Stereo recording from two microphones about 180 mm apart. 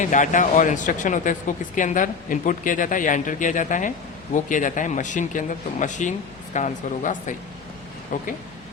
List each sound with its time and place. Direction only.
0.0 s speech: 45° left (ahead or behind)